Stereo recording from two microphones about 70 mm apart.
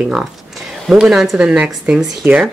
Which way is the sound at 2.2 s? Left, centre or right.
Right.